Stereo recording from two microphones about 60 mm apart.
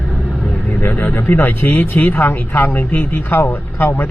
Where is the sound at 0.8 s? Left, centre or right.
Left.